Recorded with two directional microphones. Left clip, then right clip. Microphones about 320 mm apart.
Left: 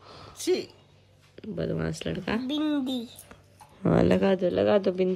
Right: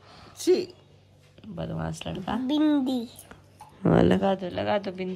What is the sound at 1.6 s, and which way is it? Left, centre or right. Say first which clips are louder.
Speech: left 3 dB; right.